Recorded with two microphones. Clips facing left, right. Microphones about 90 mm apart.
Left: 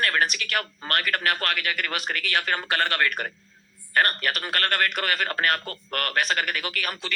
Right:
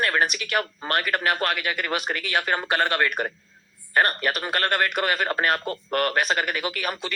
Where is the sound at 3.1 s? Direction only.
30° right (ahead or behind).